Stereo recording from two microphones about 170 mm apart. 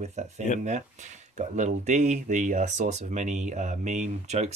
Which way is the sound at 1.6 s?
45° right (ahead or behind).